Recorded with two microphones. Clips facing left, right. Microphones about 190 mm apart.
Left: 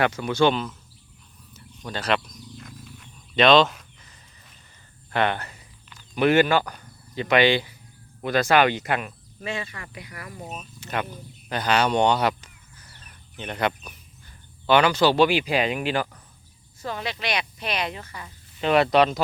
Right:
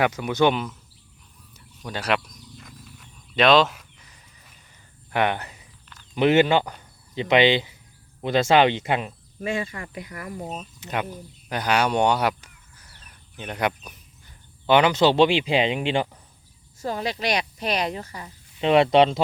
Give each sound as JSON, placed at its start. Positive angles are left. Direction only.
{"t": 0.0, "sound": "speech", "side_deg": -15}
{"t": 1.5, "sound": "wild animals", "side_deg": -10}
{"t": 5.1, "sound": "speech", "side_deg": -15}
{"t": 9.4, "sound": "speech", "side_deg": -45}
{"t": 10.2, "sound": "speech", "side_deg": -30}
{"t": 16.8, "sound": "speech", "side_deg": -40}